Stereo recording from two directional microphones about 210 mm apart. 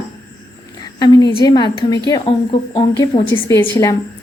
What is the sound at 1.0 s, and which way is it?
A woman's voice, 20° left (ahead or behind).